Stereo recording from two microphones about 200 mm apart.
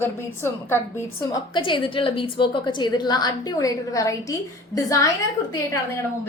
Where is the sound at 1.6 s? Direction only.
25° left (ahead or behind).